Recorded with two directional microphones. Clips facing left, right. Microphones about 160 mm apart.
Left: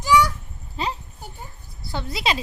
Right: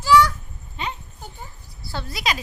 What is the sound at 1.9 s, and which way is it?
Speech, 20° left (ahead or behind).